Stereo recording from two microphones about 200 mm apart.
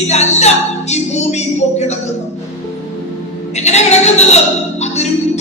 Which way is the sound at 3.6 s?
35° left (ahead or behind).